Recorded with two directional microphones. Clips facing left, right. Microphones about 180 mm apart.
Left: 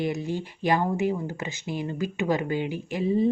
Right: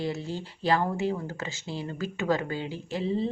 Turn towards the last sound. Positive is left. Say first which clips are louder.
# left 4 dB
turn(degrees=15)  # may be behind; listen again after turning